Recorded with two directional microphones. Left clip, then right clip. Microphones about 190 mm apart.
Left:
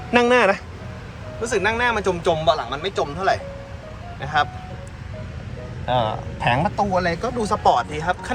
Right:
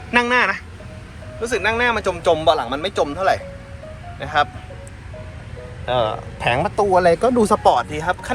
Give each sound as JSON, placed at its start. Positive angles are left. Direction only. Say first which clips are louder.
{"t": 0.1, "sound": "speech", "louder": "left 1 dB", "side_deg": 15}
{"t": 5.8, "sound": "speech", "louder": "right 2 dB", "side_deg": 5}
{"t": 6.9, "sound": "speech", "louder": "right 7 dB", "side_deg": -5}
{"t": 7.6, "sound": "speech", "louder": "right 2 dB", "side_deg": 10}